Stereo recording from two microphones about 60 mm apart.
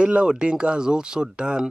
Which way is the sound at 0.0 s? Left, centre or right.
Centre.